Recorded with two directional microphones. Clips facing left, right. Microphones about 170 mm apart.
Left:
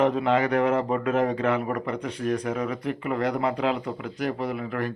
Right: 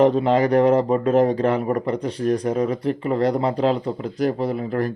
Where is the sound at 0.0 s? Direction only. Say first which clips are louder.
Right 5 dB; 35° right (ahead or behind).